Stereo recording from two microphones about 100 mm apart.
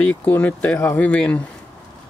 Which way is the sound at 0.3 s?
15° left (ahead or behind).